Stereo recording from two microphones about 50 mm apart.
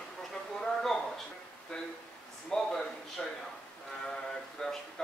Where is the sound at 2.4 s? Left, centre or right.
Centre.